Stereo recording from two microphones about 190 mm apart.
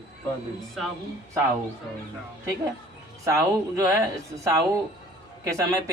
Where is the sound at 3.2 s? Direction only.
15° right (ahead or behind).